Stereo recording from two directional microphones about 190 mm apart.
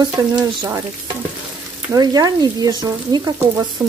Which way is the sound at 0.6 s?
15° right (ahead or behind).